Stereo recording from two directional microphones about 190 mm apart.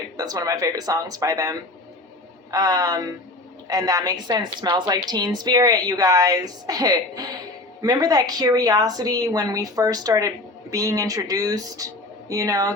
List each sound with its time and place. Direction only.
0.2 s a woman's voice: 20° right (ahead or behind)